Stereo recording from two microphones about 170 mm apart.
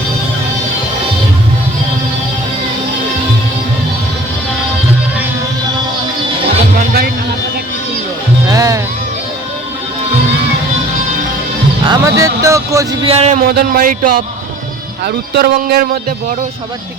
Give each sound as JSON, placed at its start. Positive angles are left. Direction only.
{"t": 6.7, "sound": "music", "side_deg": -65}
{"t": 8.4, "sound": "music", "side_deg": -20}
{"t": 11.9, "sound": "a sound", "side_deg": -20}
{"t": 13.4, "sound": "speech", "side_deg": -60}